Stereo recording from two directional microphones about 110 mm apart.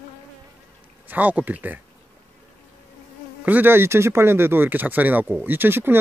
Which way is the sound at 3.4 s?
20° right (ahead or behind).